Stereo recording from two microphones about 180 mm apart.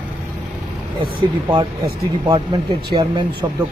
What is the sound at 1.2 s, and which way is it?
Speech, 25° right (ahead or behind).